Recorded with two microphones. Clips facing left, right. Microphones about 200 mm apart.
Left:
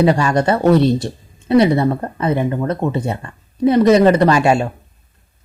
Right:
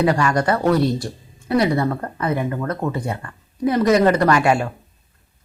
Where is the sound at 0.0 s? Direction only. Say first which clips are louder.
Left 4 dB; 25° left (ahead or behind).